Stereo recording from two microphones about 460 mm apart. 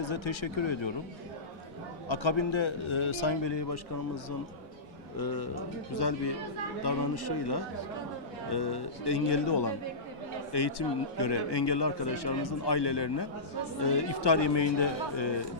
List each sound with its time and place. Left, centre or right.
0.0 s a man's voice: left
2.0 s a man's voice: left
5.1 s speech: left